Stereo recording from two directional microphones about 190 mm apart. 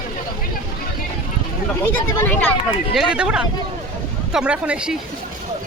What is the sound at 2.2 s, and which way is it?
Speech, 10° left (ahead or behind).